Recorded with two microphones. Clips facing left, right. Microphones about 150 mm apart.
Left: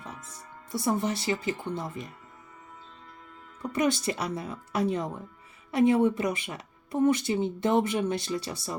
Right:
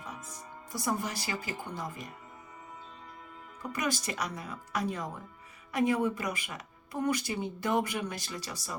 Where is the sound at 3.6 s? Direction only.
30° left (ahead or behind).